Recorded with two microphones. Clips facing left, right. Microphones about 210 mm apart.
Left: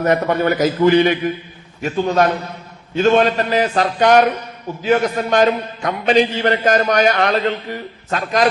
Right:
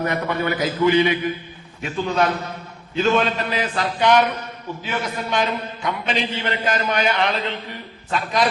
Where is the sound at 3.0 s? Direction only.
45° left (ahead or behind).